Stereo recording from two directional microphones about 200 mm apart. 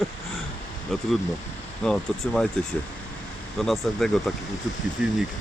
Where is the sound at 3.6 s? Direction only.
Centre (ahead or behind).